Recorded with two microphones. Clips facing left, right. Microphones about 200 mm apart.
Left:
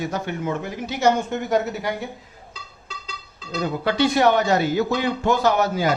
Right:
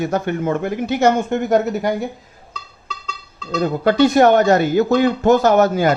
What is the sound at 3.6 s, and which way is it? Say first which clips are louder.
Speech: right 6 dB; 45° right (ahead or behind).